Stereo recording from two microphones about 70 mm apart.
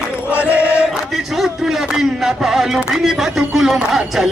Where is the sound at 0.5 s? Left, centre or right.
Centre.